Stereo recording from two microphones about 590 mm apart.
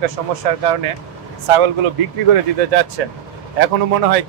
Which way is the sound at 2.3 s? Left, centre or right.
Right.